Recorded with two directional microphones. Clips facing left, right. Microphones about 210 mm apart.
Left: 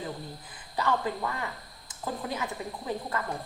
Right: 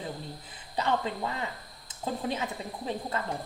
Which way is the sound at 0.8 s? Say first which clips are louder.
Even; 20° right (ahead or behind).